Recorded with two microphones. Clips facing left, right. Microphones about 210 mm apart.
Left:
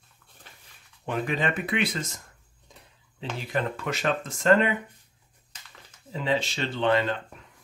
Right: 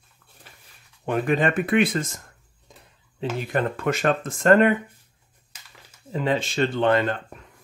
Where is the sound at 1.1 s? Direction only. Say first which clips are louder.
Right 6 dB; 50° right (ahead or behind).